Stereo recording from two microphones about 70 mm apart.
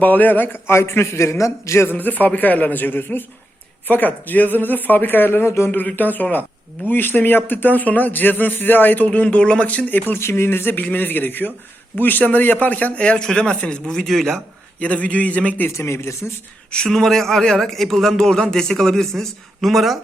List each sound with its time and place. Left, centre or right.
0.0 s a man's voice: left
1.9 s speech: left
5.7 s speech: left
10.2 s a man's voice: left; by 14.4 s centre
14.8 s speech: left
15.7 s a man's voice: left
16.7 s a man's voice: centre